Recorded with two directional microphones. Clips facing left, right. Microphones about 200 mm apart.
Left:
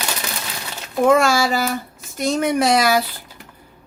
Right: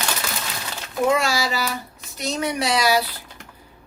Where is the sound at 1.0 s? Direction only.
50° left (ahead or behind).